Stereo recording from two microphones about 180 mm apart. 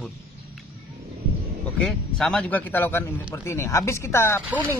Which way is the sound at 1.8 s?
5° left (ahead or behind).